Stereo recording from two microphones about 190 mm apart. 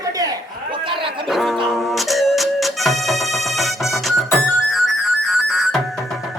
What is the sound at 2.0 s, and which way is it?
Music, centre (ahead or behind).